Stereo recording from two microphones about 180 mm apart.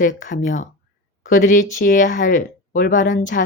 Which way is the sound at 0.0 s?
45° left (ahead or behind).